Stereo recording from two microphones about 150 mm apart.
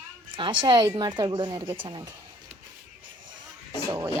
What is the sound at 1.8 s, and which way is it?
Speech, 30° right (ahead or behind).